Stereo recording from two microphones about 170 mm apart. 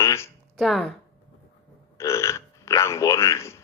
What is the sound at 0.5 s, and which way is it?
Speech, centre (ahead or behind).